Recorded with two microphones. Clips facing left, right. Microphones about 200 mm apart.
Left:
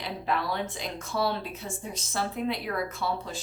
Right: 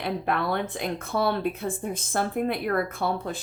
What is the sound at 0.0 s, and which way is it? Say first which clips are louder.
Speech: right 4 dB; 55° right (ahead or behind).